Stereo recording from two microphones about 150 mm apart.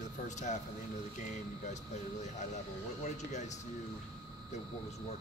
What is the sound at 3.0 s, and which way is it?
Speech, 50° left (ahead or behind).